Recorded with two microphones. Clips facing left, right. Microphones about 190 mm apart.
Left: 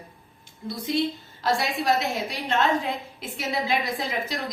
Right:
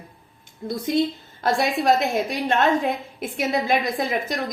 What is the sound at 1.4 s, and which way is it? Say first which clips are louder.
A woman's voice: right 4 dB; 50° right (ahead or behind).